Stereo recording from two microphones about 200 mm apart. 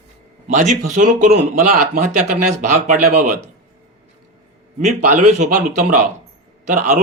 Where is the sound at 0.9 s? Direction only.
40° right (ahead or behind).